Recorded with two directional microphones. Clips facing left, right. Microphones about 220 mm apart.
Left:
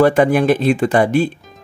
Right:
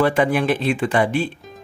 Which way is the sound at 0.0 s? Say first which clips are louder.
Left 5 dB; 45° left (ahead or behind).